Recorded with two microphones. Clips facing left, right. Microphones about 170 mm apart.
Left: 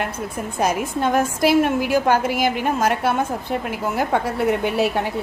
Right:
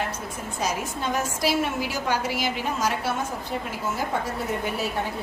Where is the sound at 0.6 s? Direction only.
55° left (ahead or behind).